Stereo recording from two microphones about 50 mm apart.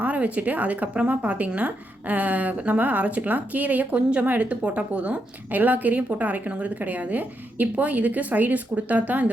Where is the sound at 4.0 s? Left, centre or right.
Right.